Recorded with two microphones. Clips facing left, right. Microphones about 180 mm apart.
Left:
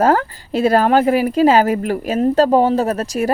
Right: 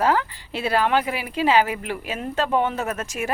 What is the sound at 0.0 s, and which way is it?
A woman's voice, 45° left (ahead or behind).